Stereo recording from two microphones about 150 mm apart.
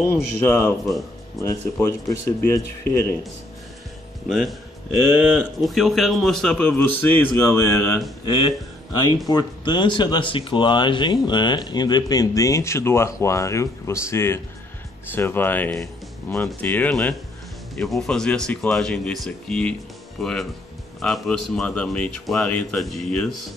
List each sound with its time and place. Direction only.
0.0 s a man's voice: 15° left (ahead or behind)
4.3 s a man's voice: centre (ahead or behind)